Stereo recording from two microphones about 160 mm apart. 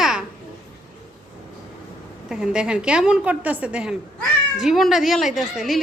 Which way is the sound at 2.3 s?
5° right (ahead or behind).